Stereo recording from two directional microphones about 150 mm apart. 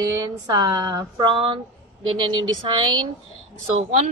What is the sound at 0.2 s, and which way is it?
Speech, 25° right (ahead or behind).